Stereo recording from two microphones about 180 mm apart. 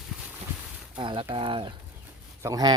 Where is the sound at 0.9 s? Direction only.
25° right (ahead or behind).